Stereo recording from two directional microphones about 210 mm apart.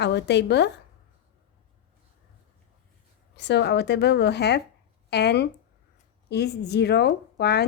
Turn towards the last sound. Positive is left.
turn(degrees=50)  # may be behind; listen again after turning